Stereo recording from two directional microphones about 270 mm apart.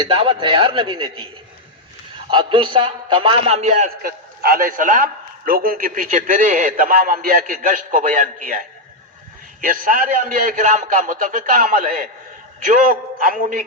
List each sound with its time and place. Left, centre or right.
0.0 s a man's voice: centre
2.3 s a man's voice: centre